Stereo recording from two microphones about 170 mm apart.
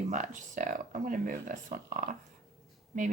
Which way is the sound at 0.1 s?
45° right (ahead or behind).